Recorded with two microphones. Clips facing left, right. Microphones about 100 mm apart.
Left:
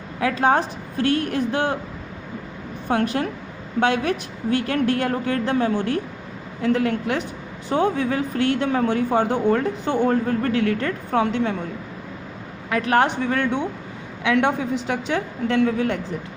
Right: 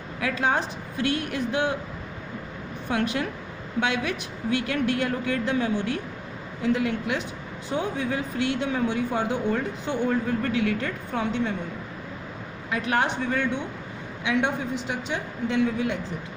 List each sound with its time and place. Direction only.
0.4 s speech: 45° left (ahead or behind)
2.9 s speech: 40° left (ahead or behind); by 11.5 s 65° left (ahead or behind)
12.7 s a woman's voice: 60° left (ahead or behind)